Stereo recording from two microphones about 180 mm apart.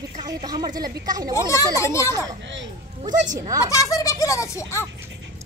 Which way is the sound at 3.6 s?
20° left (ahead or behind).